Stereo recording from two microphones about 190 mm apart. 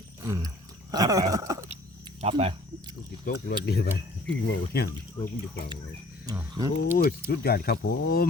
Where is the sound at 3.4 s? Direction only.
55° left (ahead or behind).